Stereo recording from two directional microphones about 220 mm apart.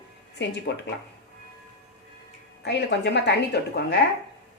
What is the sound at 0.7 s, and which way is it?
Speech, 50° left (ahead or behind).